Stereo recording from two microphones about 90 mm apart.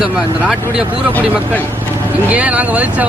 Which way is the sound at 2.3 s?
15° right (ahead or behind).